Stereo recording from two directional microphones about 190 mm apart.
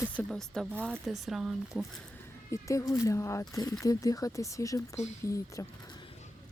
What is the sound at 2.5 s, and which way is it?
Speech, 15° left (ahead or behind).